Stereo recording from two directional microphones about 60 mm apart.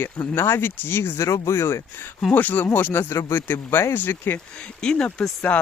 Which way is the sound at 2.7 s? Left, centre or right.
Left.